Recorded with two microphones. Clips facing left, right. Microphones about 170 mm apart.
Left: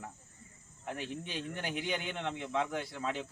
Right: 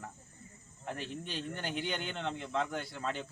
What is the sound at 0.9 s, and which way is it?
Speech, 10° left (ahead or behind).